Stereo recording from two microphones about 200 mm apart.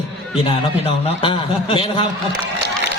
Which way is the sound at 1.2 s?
25° left (ahead or behind).